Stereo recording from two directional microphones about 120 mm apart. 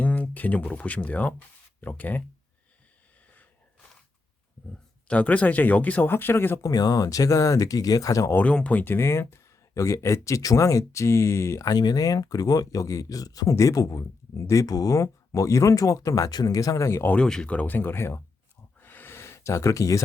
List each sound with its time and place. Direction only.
0.0 s speech: 10° left (ahead or behind)
5.0 s speech: 10° left (ahead or behind)
6.7 s speech: 30° left (ahead or behind)
8.4 s speech: 10° left (ahead or behind)
18.8 s a sound: 15° left (ahead or behind)